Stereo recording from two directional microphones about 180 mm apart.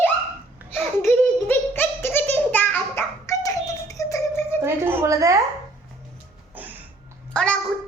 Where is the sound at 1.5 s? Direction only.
10° left (ahead or behind).